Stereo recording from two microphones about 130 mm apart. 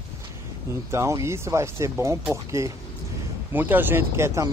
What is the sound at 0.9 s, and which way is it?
Speech, 20° right (ahead or behind).